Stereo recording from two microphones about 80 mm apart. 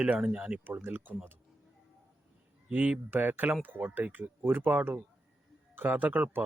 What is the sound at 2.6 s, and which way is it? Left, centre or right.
Speech, centre.